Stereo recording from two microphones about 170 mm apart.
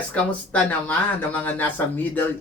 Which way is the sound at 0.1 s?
10° left (ahead or behind).